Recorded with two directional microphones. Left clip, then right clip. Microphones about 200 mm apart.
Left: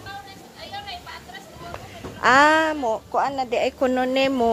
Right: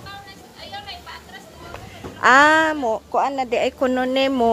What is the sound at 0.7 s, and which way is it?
Vehicle, 50° right (ahead or behind).